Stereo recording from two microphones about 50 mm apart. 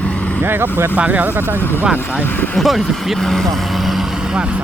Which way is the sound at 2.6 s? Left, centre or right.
Centre.